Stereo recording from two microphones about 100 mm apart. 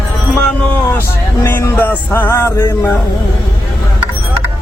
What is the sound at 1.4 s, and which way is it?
Male singing, 25° left (ahead or behind).